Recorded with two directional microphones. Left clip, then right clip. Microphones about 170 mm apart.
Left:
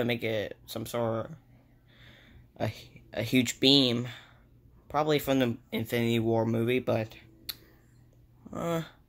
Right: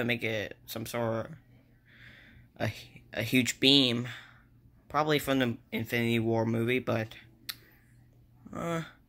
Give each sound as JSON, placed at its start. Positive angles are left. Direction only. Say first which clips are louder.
{"t": 0.0, "sound": "speech", "louder": "left 1 dB", "side_deg": 15}
{"t": 2.0, "sound": "a sound", "louder": "right 2 dB", "side_deg": 15}
{"t": 4.8, "sound": "speech", "louder": "left 1 dB", "side_deg": 10}
{"t": 8.5, "sound": "speech", "louder": "left 2 dB", "side_deg": 15}